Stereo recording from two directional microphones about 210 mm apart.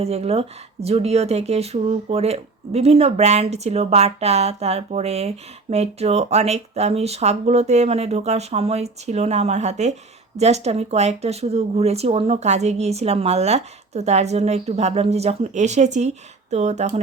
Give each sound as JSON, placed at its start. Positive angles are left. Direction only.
{"t": 0.0, "sound": "speech", "side_deg": -30}